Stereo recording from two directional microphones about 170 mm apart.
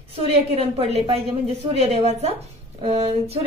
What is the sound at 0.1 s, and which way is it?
Speech, 35° right (ahead or behind).